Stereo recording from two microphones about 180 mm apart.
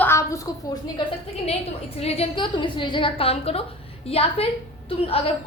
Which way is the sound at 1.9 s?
35° left (ahead or behind).